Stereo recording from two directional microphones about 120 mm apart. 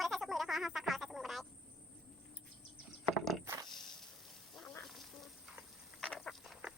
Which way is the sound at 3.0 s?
Centre (ahead or behind).